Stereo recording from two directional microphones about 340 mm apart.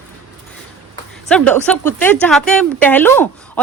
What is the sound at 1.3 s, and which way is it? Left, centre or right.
A woman's voice, centre.